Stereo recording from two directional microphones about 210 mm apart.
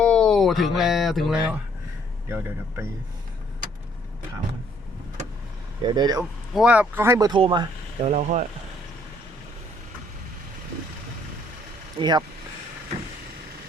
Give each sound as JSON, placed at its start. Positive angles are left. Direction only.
{"t": 0.0, "sound": "speech", "side_deg": 5}
{"t": 5.8, "sound": "speech", "side_deg": -20}
{"t": 6.5, "sound": "speech", "side_deg": -5}
{"t": 11.9, "sound": "speech", "side_deg": -20}